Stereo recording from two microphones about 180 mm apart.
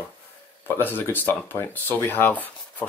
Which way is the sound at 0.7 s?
10° left (ahead or behind).